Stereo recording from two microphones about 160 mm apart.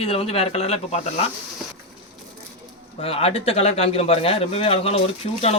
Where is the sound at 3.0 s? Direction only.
35° left (ahead or behind).